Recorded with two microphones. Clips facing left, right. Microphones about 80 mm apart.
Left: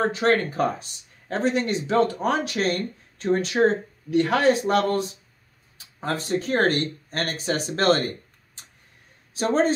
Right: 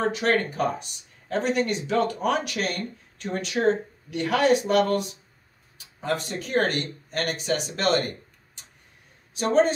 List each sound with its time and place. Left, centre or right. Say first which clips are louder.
0.0 s speech: left 2 dB; left
9.4 s speech: even; left